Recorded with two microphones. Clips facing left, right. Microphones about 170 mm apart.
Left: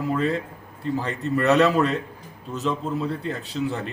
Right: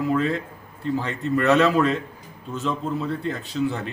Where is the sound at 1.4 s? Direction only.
5° left (ahead or behind).